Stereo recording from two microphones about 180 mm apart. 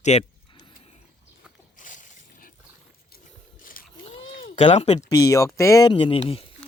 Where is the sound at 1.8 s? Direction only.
45° left (ahead or behind).